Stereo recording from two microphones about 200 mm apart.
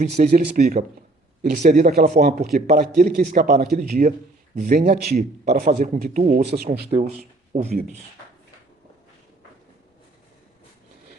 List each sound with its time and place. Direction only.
0.0 s speech: 40° right (ahead or behind)
6.4 s speech: 55° right (ahead or behind)
6.9 s speech: 30° right (ahead or behind)
7.5 s speech: 40° right (ahead or behind)